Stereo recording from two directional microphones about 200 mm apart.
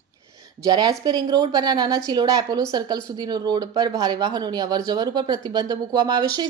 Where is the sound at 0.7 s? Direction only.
20° right (ahead or behind).